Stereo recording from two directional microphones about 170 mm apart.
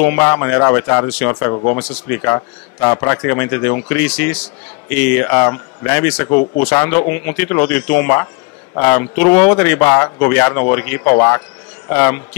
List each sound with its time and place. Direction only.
0.0 s a man's voice: 15° left (ahead or behind)